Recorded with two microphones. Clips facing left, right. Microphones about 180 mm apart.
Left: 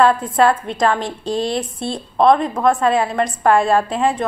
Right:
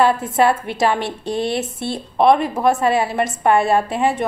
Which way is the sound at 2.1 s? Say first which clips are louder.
Left 1 dB; 15° right (ahead or behind).